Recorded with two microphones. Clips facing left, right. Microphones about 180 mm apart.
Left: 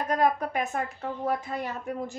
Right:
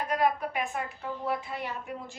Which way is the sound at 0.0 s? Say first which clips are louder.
Left 2 dB; 45° left (ahead or behind).